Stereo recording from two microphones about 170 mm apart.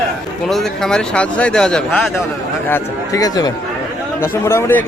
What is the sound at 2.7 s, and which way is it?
A man's voice, 20° left (ahead or behind).